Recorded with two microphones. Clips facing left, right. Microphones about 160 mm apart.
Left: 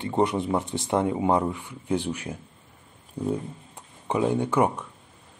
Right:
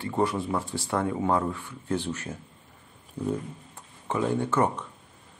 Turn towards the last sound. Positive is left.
turn(degrees=10)  # may be behind; listen again after turning